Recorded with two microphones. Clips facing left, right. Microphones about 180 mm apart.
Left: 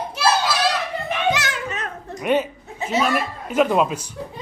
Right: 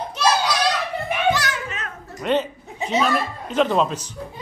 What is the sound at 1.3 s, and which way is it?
Music, 25° left (ahead or behind).